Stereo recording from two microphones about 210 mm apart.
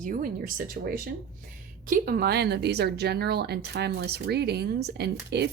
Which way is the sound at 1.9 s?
45° right (ahead or behind).